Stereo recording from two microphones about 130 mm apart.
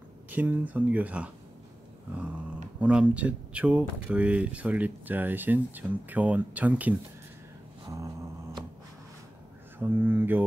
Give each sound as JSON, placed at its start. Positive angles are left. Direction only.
{"t": 0.3, "sound": "speech", "side_deg": -15}
{"t": 2.8, "sound": "speech", "side_deg": -10}
{"t": 9.8, "sound": "speech", "side_deg": -15}